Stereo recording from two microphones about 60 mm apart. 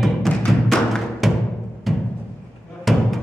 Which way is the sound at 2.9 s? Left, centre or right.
Centre.